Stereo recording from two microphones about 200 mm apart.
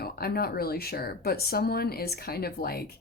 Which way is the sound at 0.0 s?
50° left (ahead or behind).